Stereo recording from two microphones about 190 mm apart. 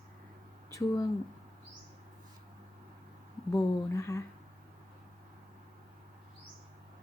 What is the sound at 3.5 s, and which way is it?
Speech, 15° left (ahead or behind).